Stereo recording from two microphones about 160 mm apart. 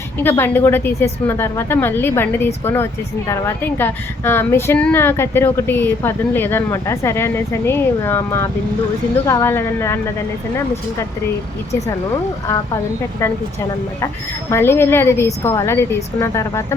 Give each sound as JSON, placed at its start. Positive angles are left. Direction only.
{"t": 0.2, "sound": "speech", "side_deg": 15}
{"t": 14.5, "sound": "speech", "side_deg": 15}